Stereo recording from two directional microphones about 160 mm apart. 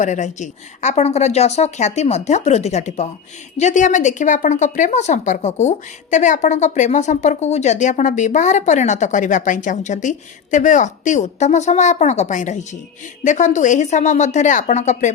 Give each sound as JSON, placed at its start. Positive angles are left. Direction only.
{"t": 0.0, "sound": "a woman's voice", "side_deg": 50}